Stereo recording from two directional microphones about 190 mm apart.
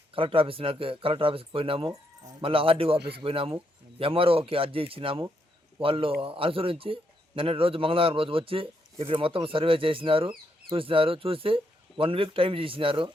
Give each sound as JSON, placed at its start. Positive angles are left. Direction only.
{"t": 0.1, "sound": "a man's voice", "side_deg": -30}